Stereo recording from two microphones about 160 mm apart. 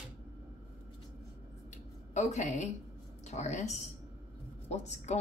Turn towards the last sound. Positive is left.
turn(degrees=45)  # may be behind; listen again after turning